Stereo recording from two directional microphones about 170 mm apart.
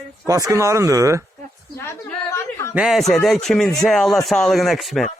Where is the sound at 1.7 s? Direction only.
15° left (ahead or behind).